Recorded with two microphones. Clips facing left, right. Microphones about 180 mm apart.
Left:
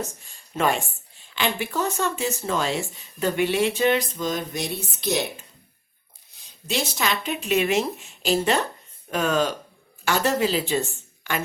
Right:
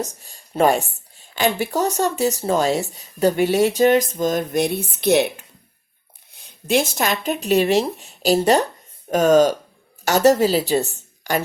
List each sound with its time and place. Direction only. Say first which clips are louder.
0.0 s a woman's voice: right 4 dB; 40° right (ahead or behind)